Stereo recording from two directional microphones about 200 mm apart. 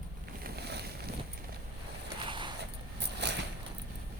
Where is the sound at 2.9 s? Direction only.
55° right (ahead or behind).